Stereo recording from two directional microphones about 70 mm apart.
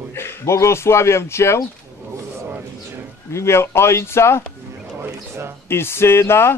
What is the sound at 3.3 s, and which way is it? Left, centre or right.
Speech, left.